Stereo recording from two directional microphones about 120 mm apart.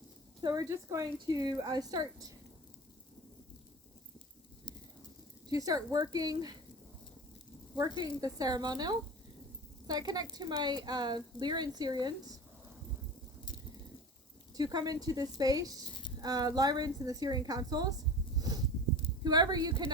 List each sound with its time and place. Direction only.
0.4 s speech: 30° right (ahead or behind)
5.5 s speech: 30° right (ahead or behind)
7.8 s a woman's voice: 30° right (ahead or behind)
14.5 s speech: 35° right (ahead or behind)
15.9 s a sound: 40° left (ahead or behind)
16.2 s speech: 35° right (ahead or behind)
18.3 s a sound: 30° right (ahead or behind)
19.2 s speech: 35° right (ahead or behind)